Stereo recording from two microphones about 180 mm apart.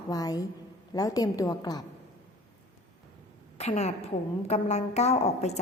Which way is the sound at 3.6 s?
40° left (ahead or behind).